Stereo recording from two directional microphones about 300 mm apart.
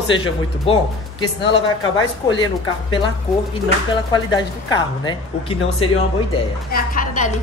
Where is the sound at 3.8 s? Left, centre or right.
Centre.